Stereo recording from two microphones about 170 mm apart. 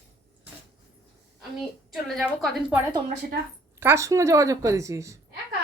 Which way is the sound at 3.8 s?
15° right (ahead or behind).